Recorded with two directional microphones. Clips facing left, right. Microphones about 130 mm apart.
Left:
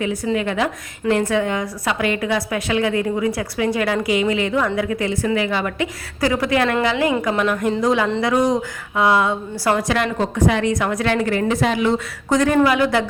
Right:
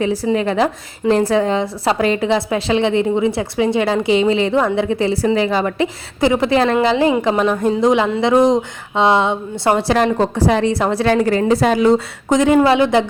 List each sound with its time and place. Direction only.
0.3 s a woman's voice: 35° right (ahead or behind)
12.3 s a woman's voice: 20° right (ahead or behind)